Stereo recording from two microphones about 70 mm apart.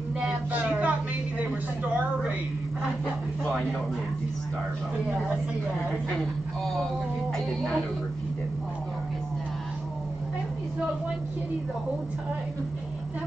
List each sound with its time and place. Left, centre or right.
0.2 s speech: centre
6.1 s speech: centre